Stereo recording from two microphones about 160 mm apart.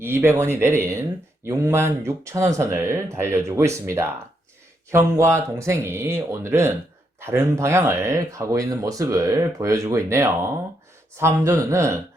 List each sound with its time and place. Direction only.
0.0 s speech: 15° right (ahead or behind)